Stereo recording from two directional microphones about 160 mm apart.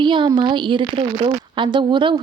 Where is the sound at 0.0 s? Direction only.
30° right (ahead or behind).